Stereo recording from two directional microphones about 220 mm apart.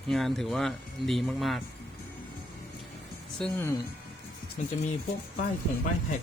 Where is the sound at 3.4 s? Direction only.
10° left (ahead or behind).